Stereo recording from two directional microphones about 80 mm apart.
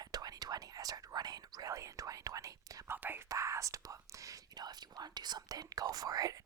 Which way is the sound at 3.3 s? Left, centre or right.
Right.